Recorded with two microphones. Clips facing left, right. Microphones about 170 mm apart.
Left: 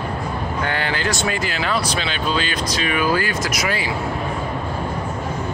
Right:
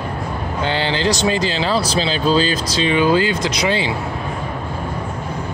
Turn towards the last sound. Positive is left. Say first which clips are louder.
# right 4 dB
turn(degrees=-25)  # may be behind; listen again after turning